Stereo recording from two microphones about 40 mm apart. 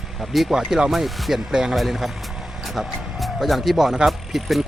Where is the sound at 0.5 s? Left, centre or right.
Centre.